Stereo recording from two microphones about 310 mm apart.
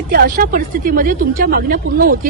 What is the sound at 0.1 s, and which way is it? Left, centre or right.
A woman's voice, right.